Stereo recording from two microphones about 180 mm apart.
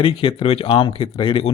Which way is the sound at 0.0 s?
30° left (ahead or behind).